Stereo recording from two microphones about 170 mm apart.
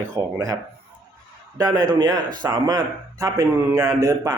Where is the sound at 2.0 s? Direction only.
25° right (ahead or behind).